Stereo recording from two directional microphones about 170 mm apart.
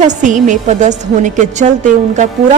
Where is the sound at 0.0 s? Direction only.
45° right (ahead or behind).